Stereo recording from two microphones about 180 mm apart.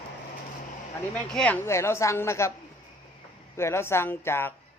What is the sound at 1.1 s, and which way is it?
A man's voice, 5° left (ahead or behind).